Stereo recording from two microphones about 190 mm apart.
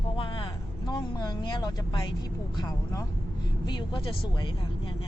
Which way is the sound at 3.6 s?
25° left (ahead or behind).